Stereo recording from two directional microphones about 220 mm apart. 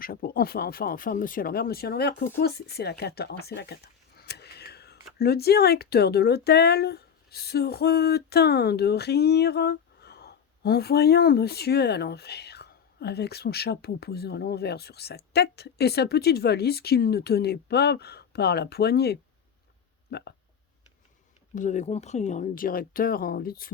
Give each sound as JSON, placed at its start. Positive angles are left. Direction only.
{"t": 0.0, "sound": "speech", "side_deg": 40}
{"t": 21.5, "sound": "speech", "side_deg": 35}